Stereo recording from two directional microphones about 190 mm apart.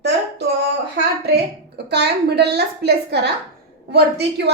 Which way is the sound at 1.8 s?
60° right (ahead or behind).